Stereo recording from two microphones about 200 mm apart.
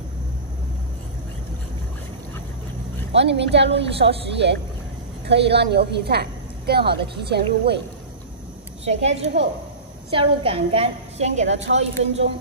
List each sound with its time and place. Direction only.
3.1 s a woman's voice: 60° right (ahead or behind)
9.0 s a woman's voice: 30° right (ahead or behind)
11.4 s a woman's voice: 65° right (ahead or behind)
12.0 s a woman's voice: 30° right (ahead or behind)